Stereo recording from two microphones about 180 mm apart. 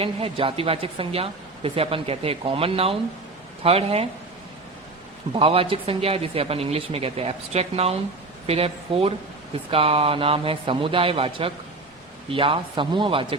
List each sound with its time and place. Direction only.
0.0 s speech: 30° right (ahead or behind)
5.3 s speech: 30° right (ahead or behind)